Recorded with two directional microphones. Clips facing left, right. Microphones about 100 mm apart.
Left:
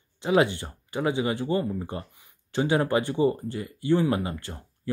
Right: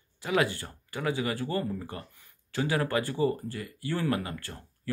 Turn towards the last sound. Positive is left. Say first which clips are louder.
# left 4 dB
turn(degrees=20)  # may be behind; listen again after turning